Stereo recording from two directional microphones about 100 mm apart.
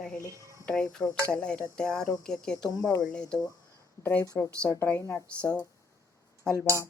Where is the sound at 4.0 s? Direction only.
15° left (ahead or behind).